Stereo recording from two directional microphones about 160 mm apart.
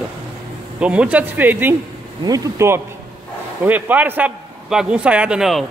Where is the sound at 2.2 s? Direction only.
20° right (ahead or behind).